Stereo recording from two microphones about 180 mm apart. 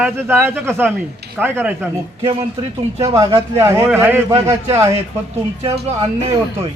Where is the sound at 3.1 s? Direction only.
15° right (ahead or behind).